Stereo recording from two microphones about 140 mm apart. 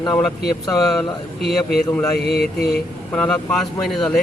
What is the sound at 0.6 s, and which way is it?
Speech, 25° left (ahead or behind).